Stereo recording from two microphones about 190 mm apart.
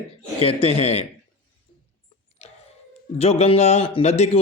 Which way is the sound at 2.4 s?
30° left (ahead or behind).